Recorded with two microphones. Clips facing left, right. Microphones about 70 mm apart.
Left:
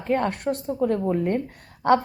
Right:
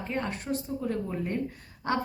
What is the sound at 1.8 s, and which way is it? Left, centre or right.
Speech, left.